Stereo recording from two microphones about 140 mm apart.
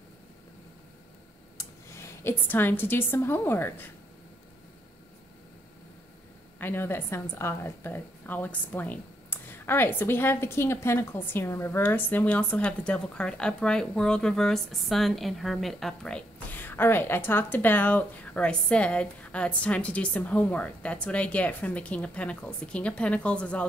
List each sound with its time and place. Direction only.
1.6 s a woman's voice: 20° left (ahead or behind)
6.6 s a woman's voice: 15° left (ahead or behind)